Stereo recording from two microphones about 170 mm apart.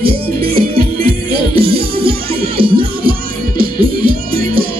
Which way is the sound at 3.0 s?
60° right (ahead or behind).